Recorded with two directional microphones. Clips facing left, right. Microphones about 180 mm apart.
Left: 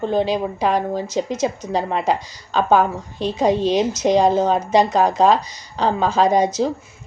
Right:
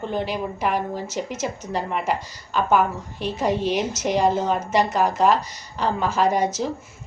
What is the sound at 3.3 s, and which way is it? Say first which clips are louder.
A woman's voice: left 5 dB; 15° left (ahead or behind).